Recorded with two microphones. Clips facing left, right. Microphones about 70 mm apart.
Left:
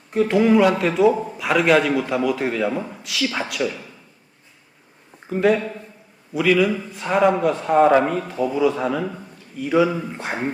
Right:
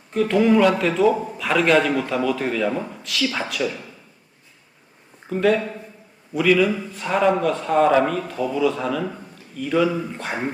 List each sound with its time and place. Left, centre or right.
0.1 s a man's voice: centre
5.3 s a man's voice: centre